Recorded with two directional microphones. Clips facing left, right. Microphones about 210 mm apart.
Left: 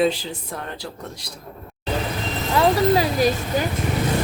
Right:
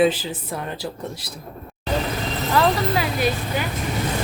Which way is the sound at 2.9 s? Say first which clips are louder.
Left 3 dB; 40° left (ahead or behind).